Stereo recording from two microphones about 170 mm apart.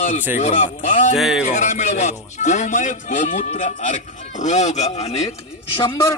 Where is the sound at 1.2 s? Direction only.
Centre (ahead or behind).